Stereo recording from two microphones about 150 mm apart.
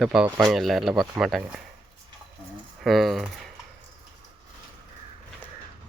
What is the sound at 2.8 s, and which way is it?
Speech, centre (ahead or behind).